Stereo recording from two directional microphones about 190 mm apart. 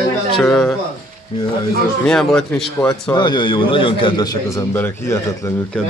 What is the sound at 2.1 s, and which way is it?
Speech, centre (ahead or behind).